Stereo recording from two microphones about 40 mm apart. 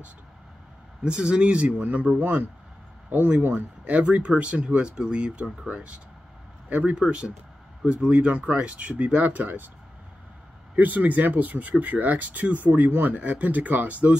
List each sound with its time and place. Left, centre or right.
1.0 s speech: right
3.8 s speech: right
9.3 s speech: right
10.8 s speech: right